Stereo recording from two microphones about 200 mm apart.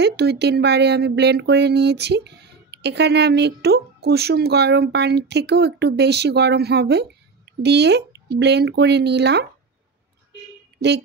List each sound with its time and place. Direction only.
0.0 s speech: 55° right (ahead or behind)